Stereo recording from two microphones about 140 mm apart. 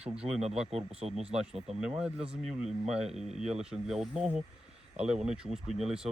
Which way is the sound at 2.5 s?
5° right (ahead or behind).